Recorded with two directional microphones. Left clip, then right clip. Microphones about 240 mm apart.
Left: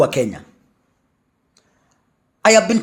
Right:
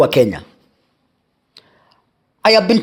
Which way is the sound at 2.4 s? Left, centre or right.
Right.